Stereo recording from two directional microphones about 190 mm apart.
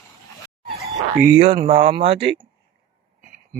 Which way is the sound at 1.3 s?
30° right (ahead or behind).